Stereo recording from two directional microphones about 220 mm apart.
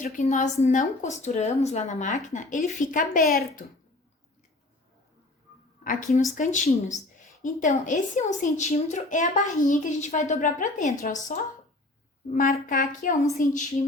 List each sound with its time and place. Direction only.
0.0 s a woman's voice: 35° left (ahead or behind)
5.8 s a woman's voice: 35° left (ahead or behind)